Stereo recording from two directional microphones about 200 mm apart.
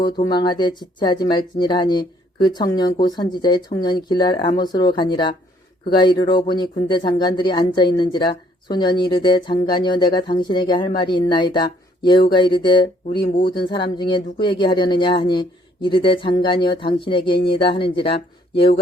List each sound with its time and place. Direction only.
0.0 s speech: 20° left (ahead or behind)